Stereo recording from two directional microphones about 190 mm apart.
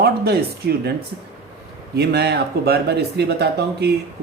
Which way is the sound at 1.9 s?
60° right (ahead or behind).